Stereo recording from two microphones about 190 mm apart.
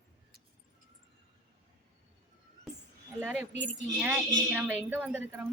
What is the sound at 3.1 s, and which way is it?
Speech, 10° right (ahead or behind).